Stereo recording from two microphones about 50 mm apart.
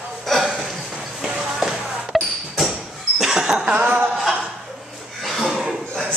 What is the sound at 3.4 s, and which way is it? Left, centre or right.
Music, centre.